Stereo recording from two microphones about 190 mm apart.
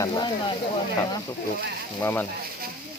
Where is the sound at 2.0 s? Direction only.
10° left (ahead or behind).